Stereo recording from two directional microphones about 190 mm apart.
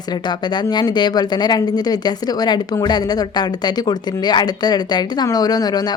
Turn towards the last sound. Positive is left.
turn(degrees=20)  # may be behind; listen again after turning